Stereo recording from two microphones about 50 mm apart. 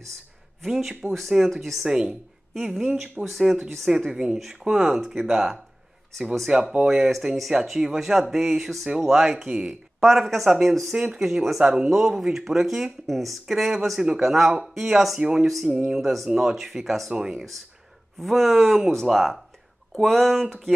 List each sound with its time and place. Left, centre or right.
0.6 s speech: centre
1.9 s speech: centre
2.5 s speech: centre
4.1 s speech: centre
6.5 s speech: right
6.9 s speech: centre
9.5 s speech: right
9.9 s speech: centre
16.0 s speech: centre
17.1 s speech: centre
18.2 s speech: centre